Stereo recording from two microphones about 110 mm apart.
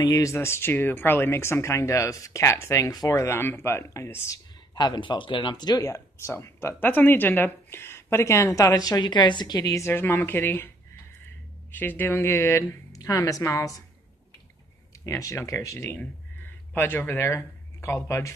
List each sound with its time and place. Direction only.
0.0 s speech: 30° left (ahead or behind)
4.7 s speech: 40° left (ahead or behind); by 10.7 s 20° left (ahead or behind)
11.7 s speech: 15° left (ahead or behind)
15.0 s speech: 30° left (ahead or behind)